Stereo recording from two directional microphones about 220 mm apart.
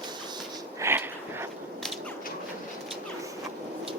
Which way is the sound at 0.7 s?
10° right (ahead or behind).